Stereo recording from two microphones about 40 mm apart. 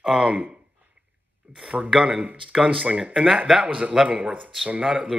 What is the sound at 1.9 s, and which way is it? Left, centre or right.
Speech, centre.